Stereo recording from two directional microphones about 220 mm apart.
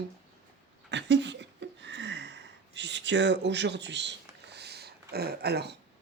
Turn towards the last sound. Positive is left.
turn(degrees=-50)  # may be behind; listen again after turning